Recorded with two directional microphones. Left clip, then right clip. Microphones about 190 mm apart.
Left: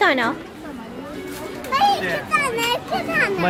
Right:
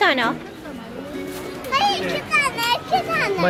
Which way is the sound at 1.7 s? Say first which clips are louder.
Left 2 dB; 40° left (ahead or behind).